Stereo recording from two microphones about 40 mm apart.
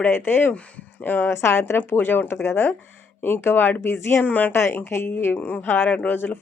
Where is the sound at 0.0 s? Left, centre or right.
Left.